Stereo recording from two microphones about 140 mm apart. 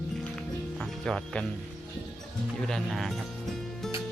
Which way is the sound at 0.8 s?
5° left (ahead or behind).